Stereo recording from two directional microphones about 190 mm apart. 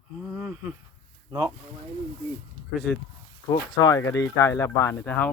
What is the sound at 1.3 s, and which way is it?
Speech, 20° right (ahead or behind).